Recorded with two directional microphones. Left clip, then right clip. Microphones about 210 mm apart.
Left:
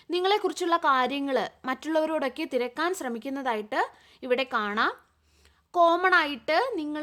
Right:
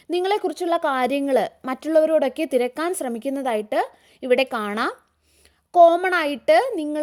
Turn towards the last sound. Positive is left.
turn(degrees=-25)  # may be behind; listen again after turning